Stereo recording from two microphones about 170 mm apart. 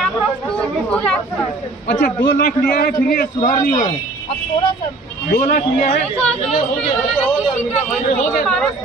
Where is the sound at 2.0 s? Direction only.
60° left (ahead or behind).